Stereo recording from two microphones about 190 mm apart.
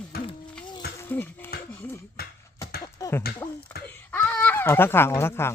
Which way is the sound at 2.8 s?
15° left (ahead or behind).